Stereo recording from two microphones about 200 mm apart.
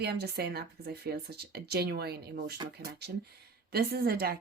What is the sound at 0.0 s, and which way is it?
Speech, 55° right (ahead or behind).